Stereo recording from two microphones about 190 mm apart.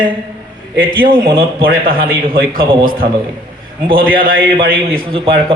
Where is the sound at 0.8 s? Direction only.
50° right (ahead or behind).